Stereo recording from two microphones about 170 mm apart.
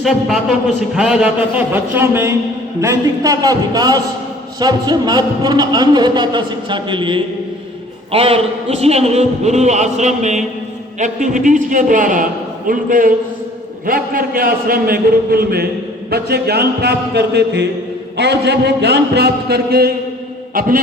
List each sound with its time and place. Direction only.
0.0 s a man's voice: centre (ahead or behind); by 19.9 s 70° right (ahead or behind)
20.5 s a man's voice: 55° right (ahead or behind)